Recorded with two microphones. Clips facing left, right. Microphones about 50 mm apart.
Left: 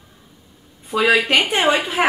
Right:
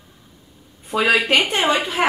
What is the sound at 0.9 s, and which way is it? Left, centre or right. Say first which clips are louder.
Speech: left 1 dB; centre.